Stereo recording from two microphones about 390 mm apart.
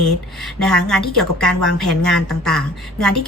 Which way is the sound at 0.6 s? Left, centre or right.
Centre.